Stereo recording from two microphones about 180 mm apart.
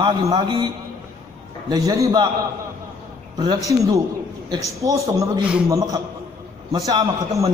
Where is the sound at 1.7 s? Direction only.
20° right (ahead or behind).